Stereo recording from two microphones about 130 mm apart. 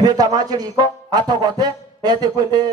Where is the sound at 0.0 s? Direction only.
30° right (ahead or behind).